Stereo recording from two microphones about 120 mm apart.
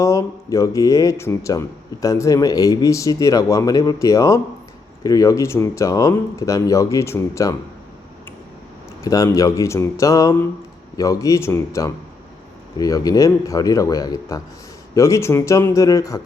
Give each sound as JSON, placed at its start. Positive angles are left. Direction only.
{"t": 0.0, "sound": "speech", "side_deg": 25}
{"t": 9.0, "sound": "speech", "side_deg": 30}